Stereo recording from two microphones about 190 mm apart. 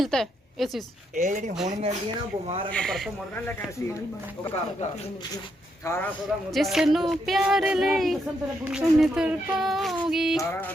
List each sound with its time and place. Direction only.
0.0 s a woman's voice: centre (ahead or behind)
1.1 s speech: 40° right (ahead or behind)
2.7 s speech: 5° left (ahead or behind)
5.8 s a man's voice: 15° left (ahead or behind)
6.5 s speech: centre (ahead or behind)